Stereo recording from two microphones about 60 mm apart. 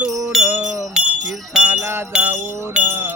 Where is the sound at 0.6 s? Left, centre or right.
Right.